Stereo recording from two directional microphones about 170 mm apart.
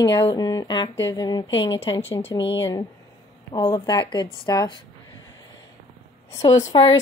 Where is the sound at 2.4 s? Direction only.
90° left.